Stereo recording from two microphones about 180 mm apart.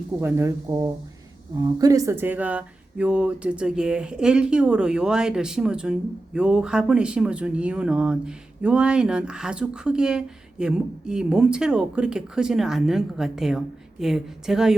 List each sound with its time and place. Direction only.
0.2 s speech: 15° right (ahead or behind)